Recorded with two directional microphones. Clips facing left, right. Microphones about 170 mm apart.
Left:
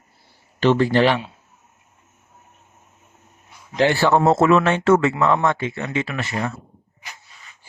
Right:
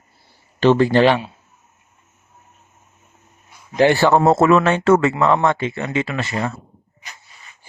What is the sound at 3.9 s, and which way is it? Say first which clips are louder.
Speech: right 2 dB; 45° right (ahead or behind).